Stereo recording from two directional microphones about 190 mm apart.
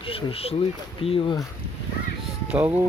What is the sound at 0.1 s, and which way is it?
Speech, 30° left (ahead or behind).